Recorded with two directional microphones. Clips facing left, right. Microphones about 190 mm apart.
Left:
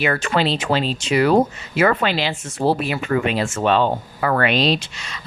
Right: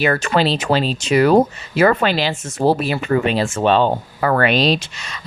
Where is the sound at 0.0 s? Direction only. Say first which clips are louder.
Right 3 dB; 40° right (ahead or behind).